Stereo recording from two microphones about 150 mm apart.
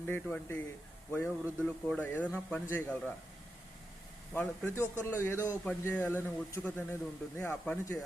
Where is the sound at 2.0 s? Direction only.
10° left (ahead or behind).